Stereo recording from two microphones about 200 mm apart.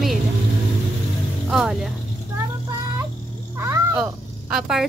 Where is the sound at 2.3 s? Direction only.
15° right (ahead or behind).